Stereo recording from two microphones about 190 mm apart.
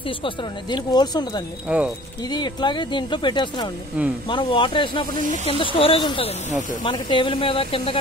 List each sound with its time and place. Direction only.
0.2 s speech: 25° left (ahead or behind)
1.7 s speech: 5° right (ahead or behind)
2.2 s speech: 20° left (ahead or behind)
4.0 s speech: 10° right (ahead or behind)
4.3 s speech: 25° left (ahead or behind)